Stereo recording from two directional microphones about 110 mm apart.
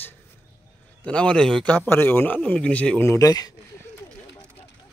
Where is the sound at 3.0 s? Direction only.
30° left (ahead or behind).